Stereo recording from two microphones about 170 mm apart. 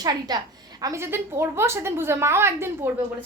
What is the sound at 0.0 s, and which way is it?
A woman's voice, 25° right (ahead or behind).